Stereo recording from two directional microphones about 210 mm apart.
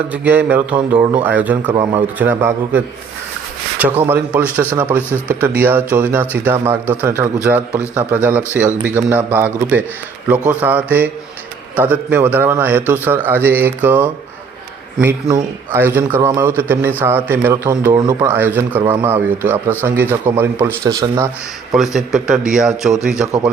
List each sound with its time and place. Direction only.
0.1 s speech: 5° right (ahead or behind)
1.7 s a man's voice: 20° right (ahead or behind)
2.1 s speech: 10° right (ahead or behind)
15.3 s speech: 15° right (ahead or behind)
21.7 s a man's voice: centre (ahead or behind)